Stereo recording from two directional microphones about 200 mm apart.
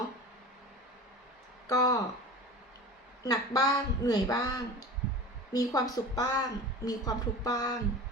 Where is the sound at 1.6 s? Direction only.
20° left (ahead or behind).